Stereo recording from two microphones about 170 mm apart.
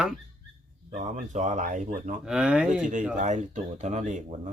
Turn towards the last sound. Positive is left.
turn(degrees=-45)  # may be behind; listen again after turning